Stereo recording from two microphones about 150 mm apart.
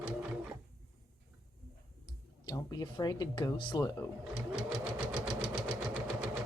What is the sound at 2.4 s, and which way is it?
Speech, 25° left (ahead or behind).